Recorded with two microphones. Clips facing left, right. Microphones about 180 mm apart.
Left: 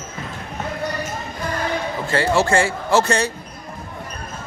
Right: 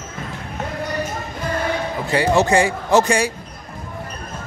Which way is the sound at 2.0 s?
15° right (ahead or behind).